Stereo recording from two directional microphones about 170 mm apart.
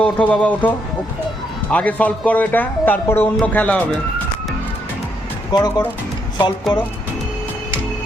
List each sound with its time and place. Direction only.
0.0 s speech: 10° left (ahead or behind)
1.7 s speech: 10° left (ahead or behind)
5.5 s speech: 25° left (ahead or behind)